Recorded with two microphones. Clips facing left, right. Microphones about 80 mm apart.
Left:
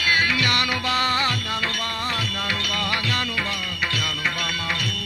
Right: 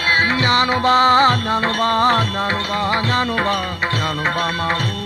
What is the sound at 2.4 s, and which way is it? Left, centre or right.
Music, right.